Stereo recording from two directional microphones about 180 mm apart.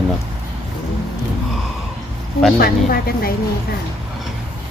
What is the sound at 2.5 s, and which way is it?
Speech, 55° left (ahead or behind).